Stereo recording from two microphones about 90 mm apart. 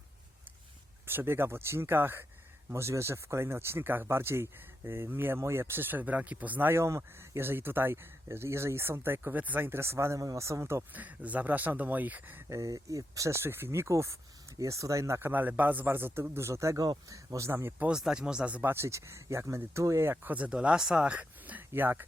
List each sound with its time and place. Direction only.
1.0 s speech: 25° right (ahead or behind)
10.9 s speech: 15° right (ahead or behind)
12.5 s speech: 35° right (ahead or behind)
15.3 s speech: 20° right (ahead or behind)
17.7 s speech: 10° right (ahead or behind)